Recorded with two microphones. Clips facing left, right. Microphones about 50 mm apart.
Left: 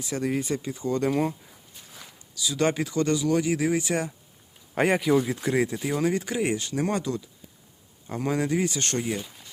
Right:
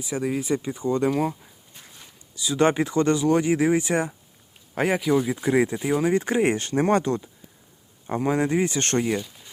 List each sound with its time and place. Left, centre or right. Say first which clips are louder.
0.0 s speech: right 1 dB; centre
0.6 s speech: right 3 dB; right
1.1 s speech: right 1 dB; centre
2.3 s speech: right 4 dB; right
4.7 s speech: even; centre
5.3 s speech: right 4 dB; centre
6.1 s speech: right 5 dB; right
8.0 s speech: right 4 dB; right